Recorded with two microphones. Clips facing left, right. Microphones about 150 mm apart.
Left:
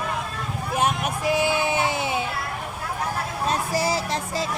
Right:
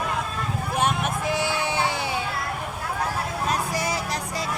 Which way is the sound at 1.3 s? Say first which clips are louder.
Left 3 dB; 15° left (ahead or behind).